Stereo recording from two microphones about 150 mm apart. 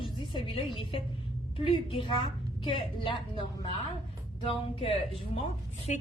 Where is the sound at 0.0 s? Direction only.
35° left (ahead or behind).